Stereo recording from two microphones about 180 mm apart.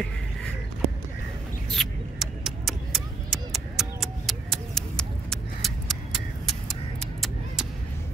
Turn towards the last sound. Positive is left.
turn(degrees=-5)  # may be behind; listen again after turning